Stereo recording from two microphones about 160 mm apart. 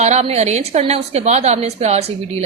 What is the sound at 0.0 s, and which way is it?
A woman's voice, 45° right (ahead or behind).